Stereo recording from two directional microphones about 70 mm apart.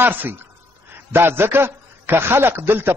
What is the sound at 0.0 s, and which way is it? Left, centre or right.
A man's voice, right.